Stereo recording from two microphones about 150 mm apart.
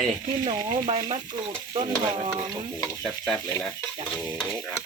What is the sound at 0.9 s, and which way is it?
Stir, 40° right (ahead or behind).